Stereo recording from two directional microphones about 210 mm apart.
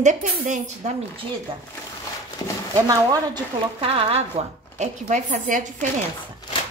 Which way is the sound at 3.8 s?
30° right (ahead or behind).